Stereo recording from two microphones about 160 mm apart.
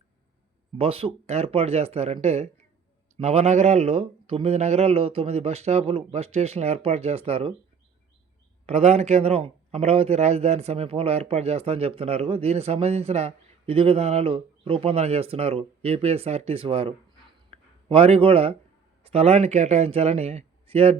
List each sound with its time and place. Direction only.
0.8 s a man's voice: 35° right (ahead or behind)
8.6 s a man's voice: 40° right (ahead or behind)